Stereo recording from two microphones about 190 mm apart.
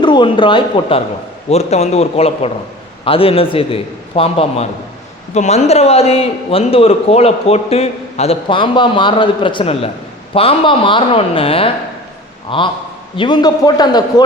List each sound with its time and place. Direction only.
0.0 s a man's voice: 25° left (ahead or behind)